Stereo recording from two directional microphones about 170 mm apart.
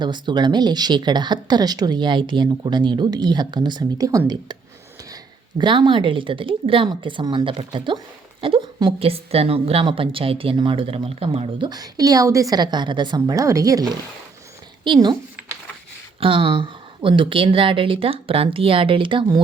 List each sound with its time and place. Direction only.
0.0 s speech: 25° right (ahead or behind)
14.8 s speech: 25° right (ahead or behind)
16.2 s speech: 30° right (ahead or behind)